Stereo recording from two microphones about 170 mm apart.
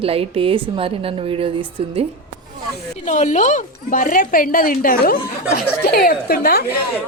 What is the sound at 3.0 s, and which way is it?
Speech, 45° left (ahead or behind).